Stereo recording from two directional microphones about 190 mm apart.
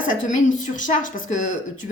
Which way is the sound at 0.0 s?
45° left (ahead or behind).